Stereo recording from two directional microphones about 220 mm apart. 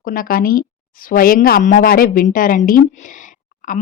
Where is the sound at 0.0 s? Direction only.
40° left (ahead or behind).